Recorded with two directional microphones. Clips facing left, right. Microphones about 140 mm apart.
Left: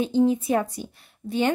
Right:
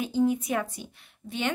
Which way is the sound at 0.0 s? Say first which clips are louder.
Left 4 dB; 25° left (ahead or behind).